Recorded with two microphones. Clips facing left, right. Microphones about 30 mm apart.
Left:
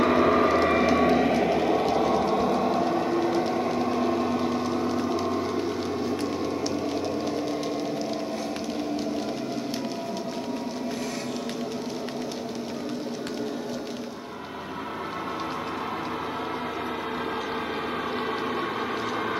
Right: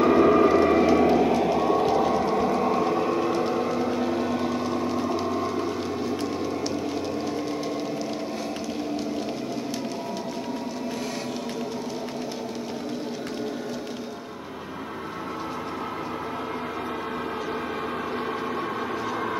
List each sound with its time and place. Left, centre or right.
0.1 s vehicle: left
1.2 s vehicle: left
1.6 s vehicle: centre
2.4 s vehicle: centre
3.3 s a sound: centre